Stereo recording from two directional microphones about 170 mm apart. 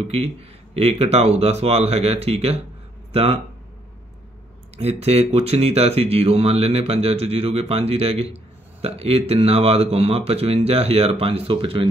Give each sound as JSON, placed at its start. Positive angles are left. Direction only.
{"t": 0.1, "sound": "speech", "side_deg": -35}
{"t": 4.7, "sound": "speech", "side_deg": -35}